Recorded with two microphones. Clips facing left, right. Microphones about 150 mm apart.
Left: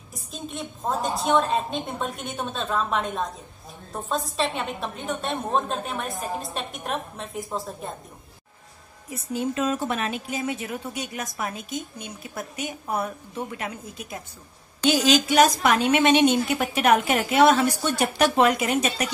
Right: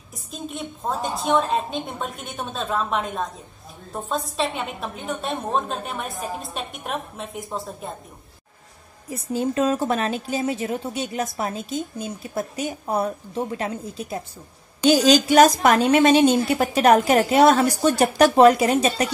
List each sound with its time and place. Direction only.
0.1 s a woman's voice: centre (ahead or behind)
9.1 s speech: 35° right (ahead or behind)